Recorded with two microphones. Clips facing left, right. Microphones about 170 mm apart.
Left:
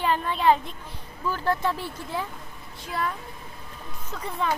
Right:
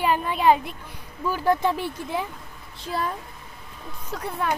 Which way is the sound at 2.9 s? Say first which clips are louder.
Right 1 dB; 35° right (ahead or behind).